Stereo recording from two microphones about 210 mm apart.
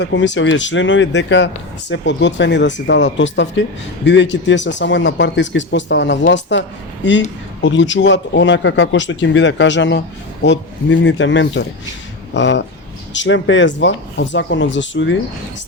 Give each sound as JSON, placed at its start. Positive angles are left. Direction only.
{"t": 0.0, "sound": "a man's voice", "side_deg": 60}